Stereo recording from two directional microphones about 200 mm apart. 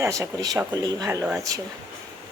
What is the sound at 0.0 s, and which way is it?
Speech, 15° right (ahead or behind).